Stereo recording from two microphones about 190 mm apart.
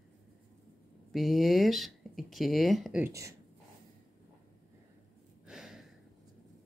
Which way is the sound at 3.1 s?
15° right (ahead or behind).